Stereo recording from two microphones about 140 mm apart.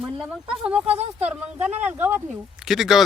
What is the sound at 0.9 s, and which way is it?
Speech, 50° right (ahead or behind).